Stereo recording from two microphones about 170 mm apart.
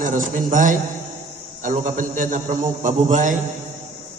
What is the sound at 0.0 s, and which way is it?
A man's voice, 50° right (ahead or behind).